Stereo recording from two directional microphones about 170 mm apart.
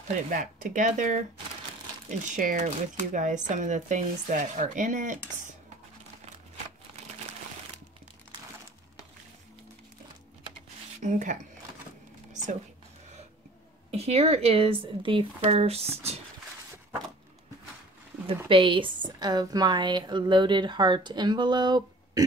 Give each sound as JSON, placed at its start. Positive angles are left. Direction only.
{"t": 0.3, "sound": "speech", "side_deg": -50}
{"t": 2.2, "sound": "speech", "side_deg": -45}
{"t": 11.0, "sound": "speech", "side_deg": -45}
{"t": 13.9, "sound": "speech", "side_deg": -35}
{"t": 18.5, "sound": "a woman's voice", "side_deg": -30}